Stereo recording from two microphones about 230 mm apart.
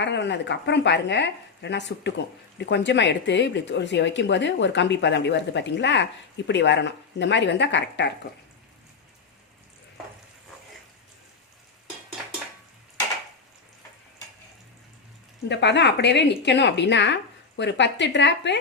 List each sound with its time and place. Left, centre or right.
0.0 s speech: left
15.4 s speech: left